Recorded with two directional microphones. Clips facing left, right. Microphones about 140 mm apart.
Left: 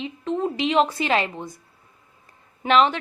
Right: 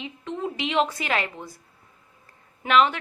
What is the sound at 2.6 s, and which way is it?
Speech, 30° left (ahead or behind).